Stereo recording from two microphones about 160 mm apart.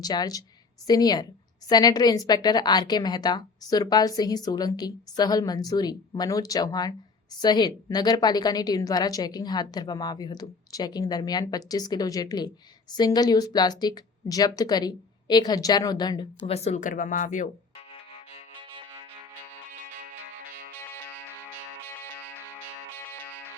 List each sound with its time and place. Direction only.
0.0 s a woman's voice: 25° left (ahead or behind)
16.5 s speech: 40° left (ahead or behind)
17.7 s music: 40° left (ahead or behind)
20.7 s music: 15° left (ahead or behind)